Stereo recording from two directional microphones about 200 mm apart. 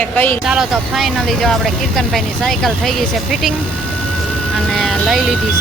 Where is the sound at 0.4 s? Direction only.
5° right (ahead or behind).